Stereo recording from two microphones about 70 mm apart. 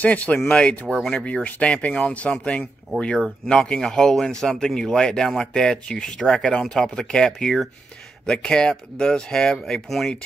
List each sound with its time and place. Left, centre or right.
0.0 s speech: left; by 10.1 s centre